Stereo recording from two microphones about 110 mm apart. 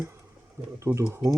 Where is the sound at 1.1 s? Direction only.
25° right (ahead or behind).